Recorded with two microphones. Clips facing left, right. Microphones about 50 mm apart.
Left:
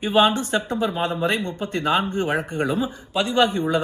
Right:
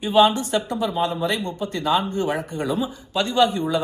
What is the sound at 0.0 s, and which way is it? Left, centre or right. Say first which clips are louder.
Speech: right 1 dB; left.